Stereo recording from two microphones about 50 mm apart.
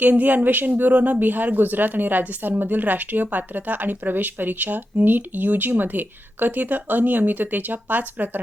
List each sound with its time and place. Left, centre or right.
0.0 s a woman's voice: right